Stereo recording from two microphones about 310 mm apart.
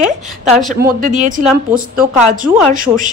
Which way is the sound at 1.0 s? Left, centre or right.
Right.